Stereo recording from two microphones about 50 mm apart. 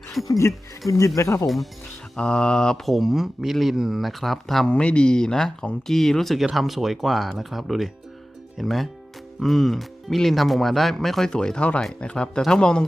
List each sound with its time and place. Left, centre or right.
0.2 s speech: centre
0.9 s speech: left
2.1 s speech: centre
2.8 s speech: centre
4.6 s speech: left; by 6.4 s centre
6.4 s speech: centre
11.3 s speech: centre